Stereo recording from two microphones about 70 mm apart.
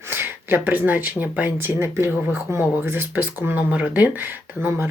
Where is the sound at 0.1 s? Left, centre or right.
Right.